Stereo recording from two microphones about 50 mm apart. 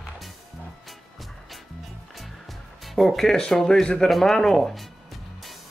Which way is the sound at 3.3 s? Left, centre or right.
Centre.